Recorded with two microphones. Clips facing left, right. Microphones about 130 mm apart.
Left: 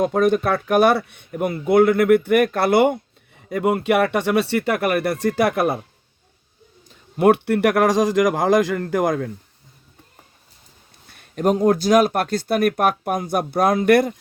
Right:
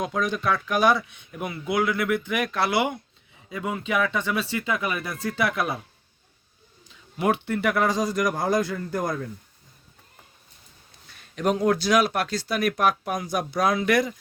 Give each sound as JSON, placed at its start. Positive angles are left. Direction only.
{"t": 0.0, "sound": "speech", "side_deg": 55}
{"t": 6.8, "sound": "speech", "side_deg": 60}
{"t": 11.1, "sound": "a sound", "side_deg": 45}
{"t": 11.5, "sound": "speech", "side_deg": 40}